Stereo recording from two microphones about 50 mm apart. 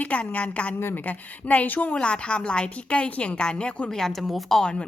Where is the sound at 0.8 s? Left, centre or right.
Left.